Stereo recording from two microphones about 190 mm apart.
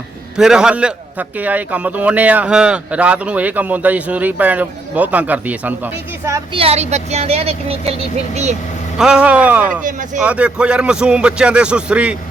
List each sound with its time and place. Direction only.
0.3 s a man's voice: 5° right (ahead or behind)
6.5 s speech: 30° right (ahead or behind)
9.0 s a man's voice: 5° right (ahead or behind)